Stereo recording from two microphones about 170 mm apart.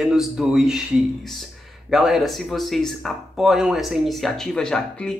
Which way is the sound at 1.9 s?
Centre (ahead or behind).